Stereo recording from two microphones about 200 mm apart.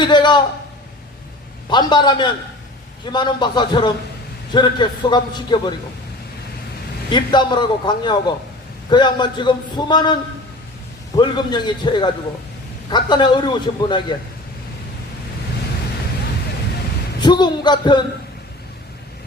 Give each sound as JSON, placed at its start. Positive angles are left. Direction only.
{"t": 0.0, "sound": "a man's voice", "side_deg": 20}
{"t": 1.7, "sound": "a man's voice", "side_deg": 20}
{"t": 7.1, "sound": "a man's voice", "side_deg": 20}
{"t": 11.2, "sound": "a man's voice", "side_deg": 20}
{"t": 17.2, "sound": "a man's voice", "side_deg": 20}